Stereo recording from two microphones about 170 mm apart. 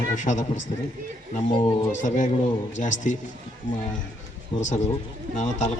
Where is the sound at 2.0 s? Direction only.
50° left (ahead or behind).